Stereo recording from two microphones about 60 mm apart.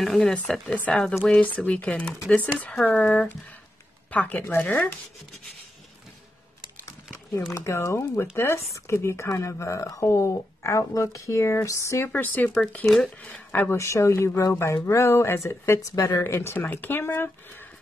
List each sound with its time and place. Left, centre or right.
0.0 s speech: centre; by 4.9 s left
7.5 s speech: left
12.1 s speech: left
12.8 s speech: centre
13.2 s speech: left
13.7 s speech: left
15.9 s speech: left
16.3 s speech: left